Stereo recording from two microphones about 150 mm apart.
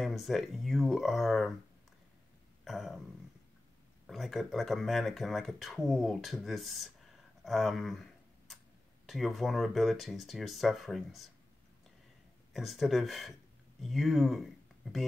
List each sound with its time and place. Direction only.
0.0 s speech: centre (ahead or behind)
2.6 s a sound: centre (ahead or behind)
4.1 s speech: centre (ahead or behind)
7.4 s a sound: centre (ahead or behind)
9.0 s speech: centre (ahead or behind)
12.5 s speech: centre (ahead or behind)